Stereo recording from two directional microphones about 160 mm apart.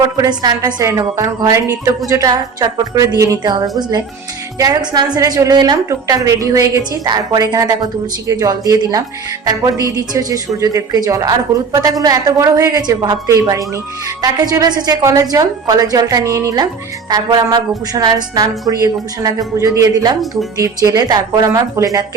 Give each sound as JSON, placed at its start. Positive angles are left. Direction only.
{"t": 0.0, "sound": "a woman's voice", "side_deg": -25}